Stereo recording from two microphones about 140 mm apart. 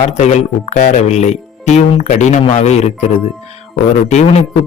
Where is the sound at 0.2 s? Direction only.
60° left (ahead or behind).